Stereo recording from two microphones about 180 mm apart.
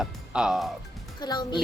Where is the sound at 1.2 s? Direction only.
25° left (ahead or behind).